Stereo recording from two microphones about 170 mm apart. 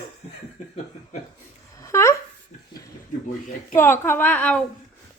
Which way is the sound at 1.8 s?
15° left (ahead or behind).